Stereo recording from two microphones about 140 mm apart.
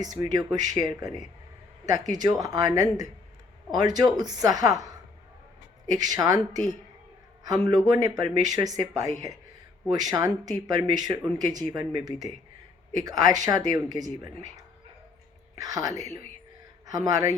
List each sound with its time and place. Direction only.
0.0 s speech: 25° right (ahead or behind)
5.9 s speech: 25° right (ahead or behind)
9.9 s speech: 30° right (ahead or behind)
13.1 s speech: 25° right (ahead or behind)
15.5 s a woman's voice: 25° right (ahead or behind)